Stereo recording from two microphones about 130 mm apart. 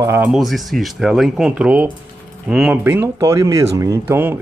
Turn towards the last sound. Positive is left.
turn(degrees=-20)  # may be behind; listen again after turning